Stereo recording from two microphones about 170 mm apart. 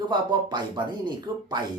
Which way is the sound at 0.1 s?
25° right (ahead or behind).